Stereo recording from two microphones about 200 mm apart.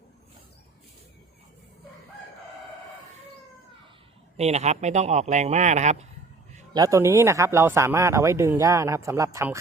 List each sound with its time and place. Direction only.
4.4 s speech: 35° right (ahead or behind)
6.7 s speech: 15° right (ahead or behind)